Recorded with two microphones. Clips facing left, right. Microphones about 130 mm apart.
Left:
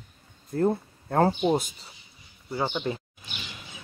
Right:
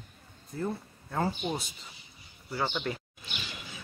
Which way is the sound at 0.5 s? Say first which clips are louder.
Left 10 dB; 55° left (ahead or behind).